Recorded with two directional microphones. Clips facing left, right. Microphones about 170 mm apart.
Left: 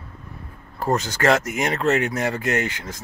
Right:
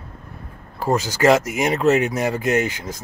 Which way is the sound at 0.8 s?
5° right (ahead or behind).